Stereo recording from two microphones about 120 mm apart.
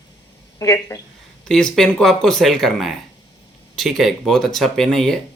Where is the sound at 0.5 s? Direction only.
25° left (ahead or behind).